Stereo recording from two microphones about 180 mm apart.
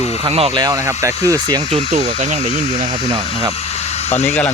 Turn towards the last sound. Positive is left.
turn(degrees=35)  # may be behind; listen again after turning